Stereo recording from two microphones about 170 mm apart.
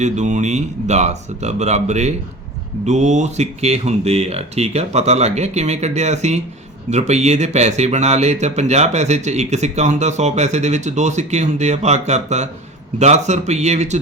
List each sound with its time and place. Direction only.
0.0 s speech: 45° right (ahead or behind)